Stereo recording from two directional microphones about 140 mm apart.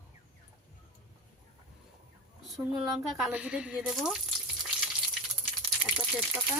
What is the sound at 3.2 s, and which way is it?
Speech, 10° right (ahead or behind).